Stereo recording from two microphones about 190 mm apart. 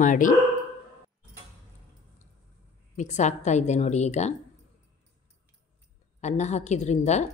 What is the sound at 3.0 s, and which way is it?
Speech, 40° left (ahead or behind).